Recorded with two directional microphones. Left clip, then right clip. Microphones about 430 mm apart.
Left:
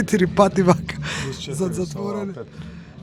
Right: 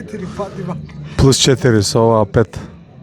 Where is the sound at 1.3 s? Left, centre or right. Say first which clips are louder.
Right 15 dB; right.